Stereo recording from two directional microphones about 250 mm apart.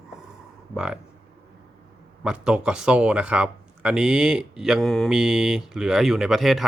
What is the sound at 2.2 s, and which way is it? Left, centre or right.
Speech, centre.